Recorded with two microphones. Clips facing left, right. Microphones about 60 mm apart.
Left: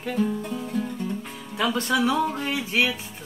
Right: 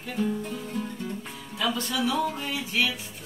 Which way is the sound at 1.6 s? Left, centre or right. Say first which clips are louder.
Left 5 dB; left.